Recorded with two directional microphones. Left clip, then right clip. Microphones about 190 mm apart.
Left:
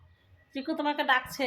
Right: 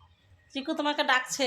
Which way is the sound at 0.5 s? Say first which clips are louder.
Right 1 dB; 20° right (ahead or behind).